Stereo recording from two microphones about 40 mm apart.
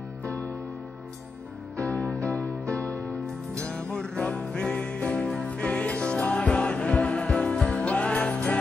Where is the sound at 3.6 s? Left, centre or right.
Left.